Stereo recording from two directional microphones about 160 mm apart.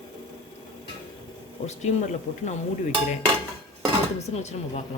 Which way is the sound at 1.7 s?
45° left (ahead or behind).